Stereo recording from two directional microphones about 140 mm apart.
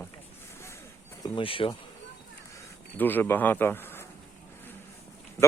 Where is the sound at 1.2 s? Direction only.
40° left (ahead or behind).